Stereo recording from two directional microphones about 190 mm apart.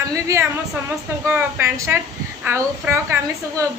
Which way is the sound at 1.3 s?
15° right (ahead or behind).